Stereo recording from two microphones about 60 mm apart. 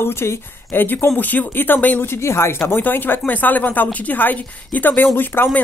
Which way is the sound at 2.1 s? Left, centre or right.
Left.